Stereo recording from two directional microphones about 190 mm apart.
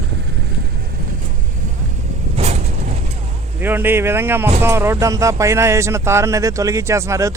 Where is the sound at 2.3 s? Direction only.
35° right (ahead or behind).